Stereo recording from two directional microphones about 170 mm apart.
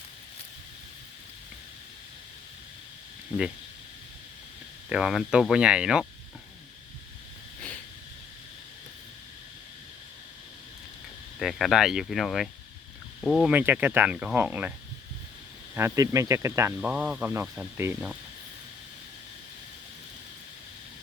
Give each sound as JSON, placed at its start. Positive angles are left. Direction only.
{"t": 4.9, "sound": "speech", "side_deg": -5}
{"t": 11.3, "sound": "speech", "side_deg": 0}
{"t": 13.5, "sound": "speech", "side_deg": -10}
{"t": 15.7, "sound": "speech", "side_deg": -15}
{"t": 16.9, "sound": "speech", "side_deg": -5}